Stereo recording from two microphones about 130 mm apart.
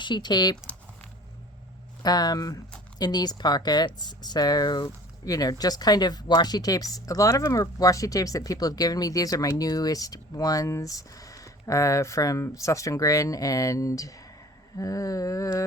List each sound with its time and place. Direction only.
0.0 s speech: 35° left (ahead or behind)
2.0 s speech: 30° left (ahead or behind)